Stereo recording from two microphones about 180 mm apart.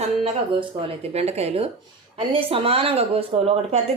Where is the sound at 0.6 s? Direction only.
30° right (ahead or behind).